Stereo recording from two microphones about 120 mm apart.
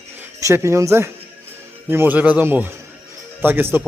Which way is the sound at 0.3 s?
25° right (ahead or behind).